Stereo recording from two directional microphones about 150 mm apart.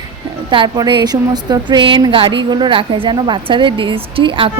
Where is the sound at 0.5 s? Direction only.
35° right (ahead or behind).